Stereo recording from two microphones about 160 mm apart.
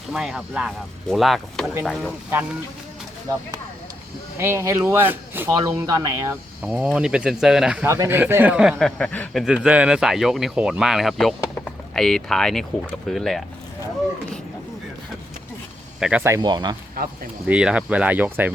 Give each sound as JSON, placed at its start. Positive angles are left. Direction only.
{"t": 0.1, "sound": "speech", "side_deg": 0}
{"t": 4.4, "sound": "speech", "side_deg": -15}
{"t": 6.7, "sound": "speech", "side_deg": -5}
{"t": 7.9, "sound": "speech", "side_deg": -15}
{"t": 9.0, "sound": "speech", "side_deg": 10}
{"t": 9.4, "sound": "speech", "side_deg": -5}
{"t": 16.0, "sound": "speech", "side_deg": -5}
{"t": 16.2, "sound": "speech", "side_deg": -20}
{"t": 17.0, "sound": "speech", "side_deg": -70}
{"t": 17.5, "sound": "speech", "side_deg": -5}